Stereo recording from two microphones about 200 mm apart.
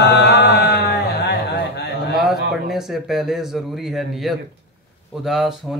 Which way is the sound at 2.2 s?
Centre (ahead or behind).